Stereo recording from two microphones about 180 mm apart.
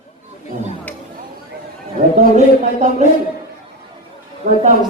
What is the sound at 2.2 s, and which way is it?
Speech, 40° right (ahead or behind).